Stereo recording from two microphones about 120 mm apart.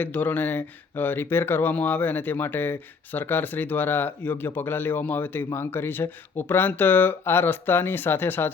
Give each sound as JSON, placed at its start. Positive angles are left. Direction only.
{"t": 0.0, "sound": "speech", "side_deg": 15}